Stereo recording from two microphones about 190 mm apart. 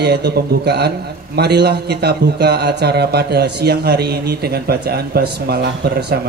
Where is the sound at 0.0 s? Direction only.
60° right (ahead or behind).